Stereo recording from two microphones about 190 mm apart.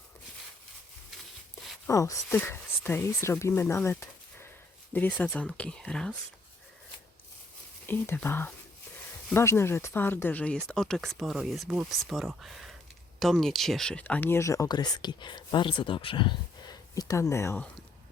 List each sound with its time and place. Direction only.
1.9 s speech: 15° left (ahead or behind)
7.9 s speech: 10° left (ahead or behind)